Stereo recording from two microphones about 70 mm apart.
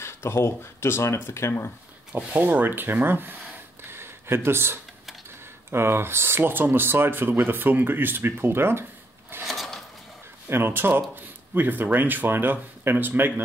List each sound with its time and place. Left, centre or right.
0.0 s speech: left
2.1 s speech: right
3.9 s a sound: right
5.7 s speech: right
9.4 s a sound: centre
10.5 s speech: right